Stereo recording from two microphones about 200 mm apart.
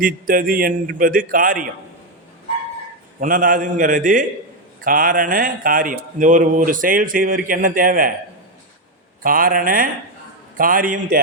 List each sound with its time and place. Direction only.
0.0 s speech: 45° right (ahead or behind)
3.2 s speech: 45° right (ahead or behind)
9.2 s speech: 45° right (ahead or behind)